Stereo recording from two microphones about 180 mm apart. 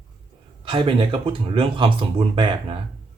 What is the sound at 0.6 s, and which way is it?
Speech, 30° right (ahead or behind).